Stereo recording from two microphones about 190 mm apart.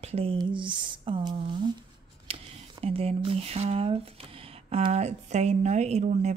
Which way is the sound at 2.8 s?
30° right (ahead or behind).